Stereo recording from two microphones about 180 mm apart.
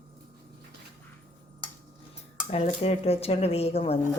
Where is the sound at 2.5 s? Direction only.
35° left (ahead or behind).